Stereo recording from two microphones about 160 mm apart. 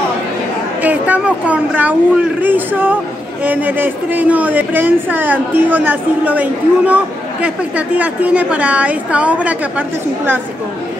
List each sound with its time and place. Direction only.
0.8 s a woman's voice: 10° right (ahead or behind)